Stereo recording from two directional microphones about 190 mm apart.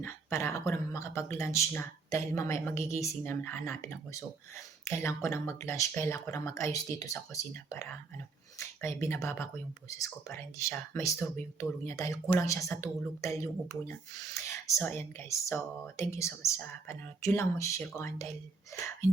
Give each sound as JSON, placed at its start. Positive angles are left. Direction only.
{"t": 0.0, "sound": "speech", "side_deg": 15}